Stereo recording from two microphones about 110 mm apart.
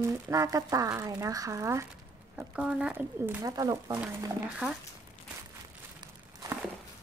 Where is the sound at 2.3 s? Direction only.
10° right (ahead or behind).